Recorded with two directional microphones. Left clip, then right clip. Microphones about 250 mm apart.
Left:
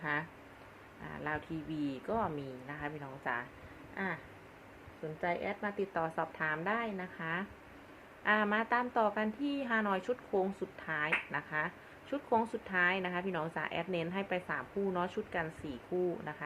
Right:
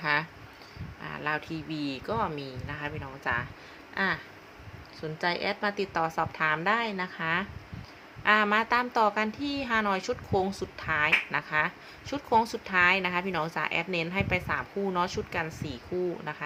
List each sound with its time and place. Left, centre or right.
0.0 s a sound: centre
1.0 s speech: centre
5.2 s a woman's voice: right